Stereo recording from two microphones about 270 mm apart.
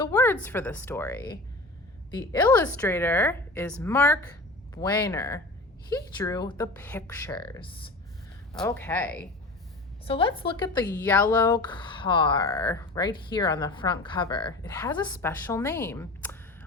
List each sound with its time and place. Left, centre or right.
0.0 s speech: centre
10.1 s a woman's voice: centre
11.0 s speech: centre